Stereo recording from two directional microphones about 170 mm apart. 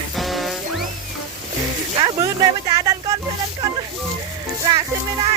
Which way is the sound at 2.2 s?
20° right (ahead or behind).